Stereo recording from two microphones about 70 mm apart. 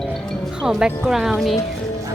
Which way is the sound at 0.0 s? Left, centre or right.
Centre.